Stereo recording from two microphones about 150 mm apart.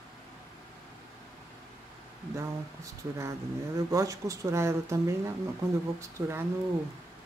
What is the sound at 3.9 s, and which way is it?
Speech, 20° right (ahead or behind).